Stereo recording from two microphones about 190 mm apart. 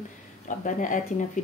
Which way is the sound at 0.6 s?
45° left (ahead or behind).